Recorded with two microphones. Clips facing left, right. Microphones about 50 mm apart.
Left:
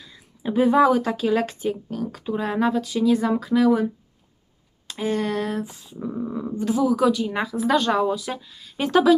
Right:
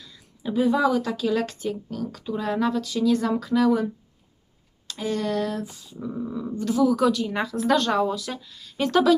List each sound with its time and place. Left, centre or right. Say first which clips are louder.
0.0 s speech: left 3 dB; left
4.9 s speech: left 2 dB; left